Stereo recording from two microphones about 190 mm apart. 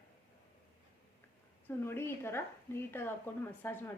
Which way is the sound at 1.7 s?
10° left (ahead or behind).